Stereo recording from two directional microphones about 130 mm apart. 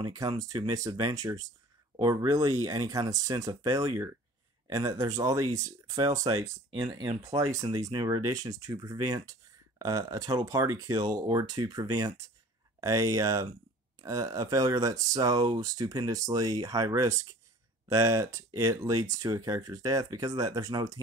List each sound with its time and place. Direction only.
0.0 s speech: 25° right (ahead or behind)
6.7 s speech: 35° right (ahead or behind)
7.2 s speech: 25° right (ahead or behind)